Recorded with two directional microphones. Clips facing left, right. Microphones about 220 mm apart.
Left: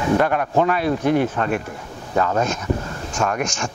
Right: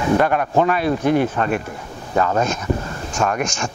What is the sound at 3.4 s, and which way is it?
Speech, 10° right (ahead or behind).